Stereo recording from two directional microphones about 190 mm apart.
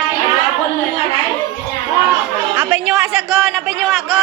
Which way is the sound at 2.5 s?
5° right (ahead or behind).